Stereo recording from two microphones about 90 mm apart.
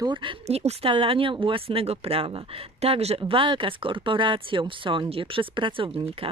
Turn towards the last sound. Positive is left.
turn(degrees=-80)